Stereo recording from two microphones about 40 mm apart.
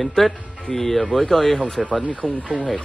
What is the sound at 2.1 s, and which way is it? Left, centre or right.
Speech, left.